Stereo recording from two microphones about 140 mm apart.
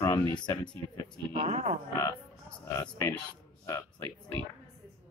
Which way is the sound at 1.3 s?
45° right (ahead or behind).